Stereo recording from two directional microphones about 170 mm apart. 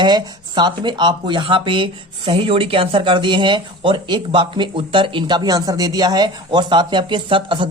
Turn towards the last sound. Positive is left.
turn(degrees=-30)  # may be behind; listen again after turning